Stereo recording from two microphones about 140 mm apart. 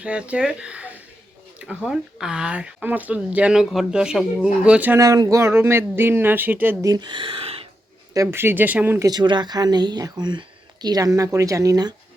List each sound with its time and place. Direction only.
0.0 s speech: 10° right (ahead or behind)
4.9 s speech: 25° right (ahead or behind)
6.8 s speech: 30° right (ahead or behind)
8.1 s speech: 20° right (ahead or behind)
9.0 s speech: 30° right (ahead or behind)